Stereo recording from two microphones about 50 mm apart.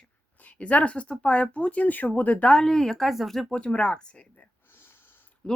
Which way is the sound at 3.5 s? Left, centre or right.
Left.